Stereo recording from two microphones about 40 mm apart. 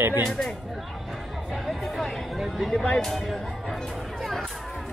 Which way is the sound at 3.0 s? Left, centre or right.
Centre.